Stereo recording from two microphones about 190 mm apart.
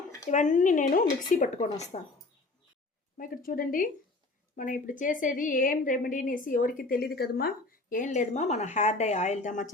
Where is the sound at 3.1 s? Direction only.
45° left (ahead or behind).